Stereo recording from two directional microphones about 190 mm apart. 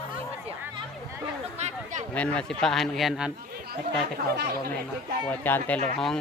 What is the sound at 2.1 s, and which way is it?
Speech, 5° left (ahead or behind).